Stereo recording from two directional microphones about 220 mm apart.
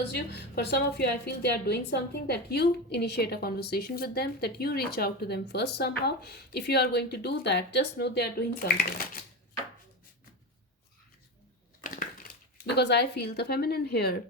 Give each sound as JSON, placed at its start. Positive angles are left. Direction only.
{"t": 0.1, "sound": "a woman's voice", "side_deg": 50}
{"t": 11.8, "sound": "crushing", "side_deg": 40}
{"t": 12.7, "sound": "a woman's voice", "side_deg": 50}